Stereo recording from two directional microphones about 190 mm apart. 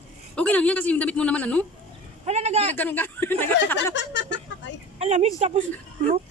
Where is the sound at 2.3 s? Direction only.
35° right (ahead or behind).